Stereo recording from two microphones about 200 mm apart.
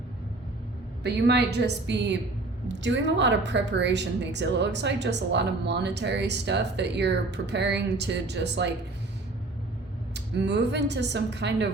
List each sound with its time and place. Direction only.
1.0 s a woman's voice: 55° right (ahead or behind)
10.2 s a woman's voice: 60° right (ahead or behind)